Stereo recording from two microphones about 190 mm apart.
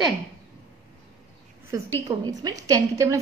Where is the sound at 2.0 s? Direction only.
20° right (ahead or behind).